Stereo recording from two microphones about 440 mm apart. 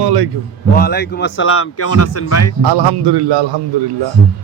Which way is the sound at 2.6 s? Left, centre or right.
Right.